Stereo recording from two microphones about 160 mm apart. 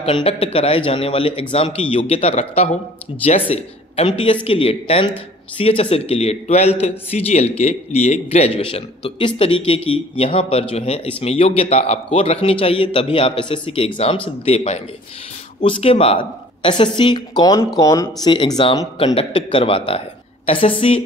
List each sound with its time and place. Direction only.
0.0 s a man's voice: 40° left (ahead or behind)